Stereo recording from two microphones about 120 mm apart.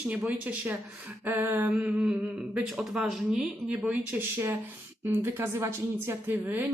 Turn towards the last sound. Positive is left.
turn(degrees=-15)  # may be behind; listen again after turning